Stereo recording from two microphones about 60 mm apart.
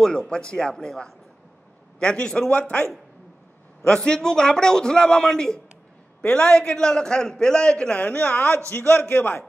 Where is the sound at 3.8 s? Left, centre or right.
Centre.